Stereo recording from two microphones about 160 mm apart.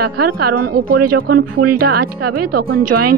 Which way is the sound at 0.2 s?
70° right (ahead or behind).